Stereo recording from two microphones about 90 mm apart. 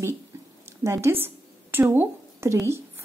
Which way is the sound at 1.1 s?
25° right (ahead or behind).